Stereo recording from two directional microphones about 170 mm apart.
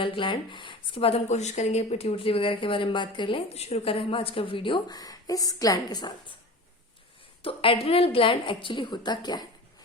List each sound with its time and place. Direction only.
0.0 s speech: 30° left (ahead or behind)
7.4 s a woman's voice: 30° left (ahead or behind)